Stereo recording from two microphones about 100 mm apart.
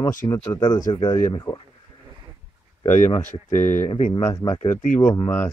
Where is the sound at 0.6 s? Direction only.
50° left (ahead or behind).